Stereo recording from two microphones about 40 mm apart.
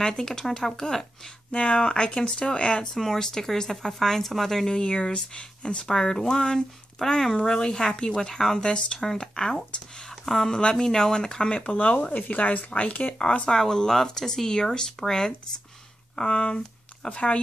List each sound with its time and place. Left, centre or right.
0.0 s speech: centre
11.6 s speech: left
13.5 s speech: centre
16.2 s speech: left